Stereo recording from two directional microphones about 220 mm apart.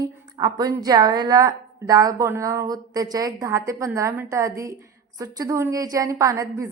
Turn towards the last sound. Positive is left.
turn(degrees=-15)  # may be behind; listen again after turning